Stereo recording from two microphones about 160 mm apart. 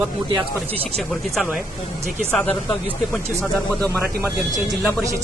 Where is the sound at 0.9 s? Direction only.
Centre (ahead or behind).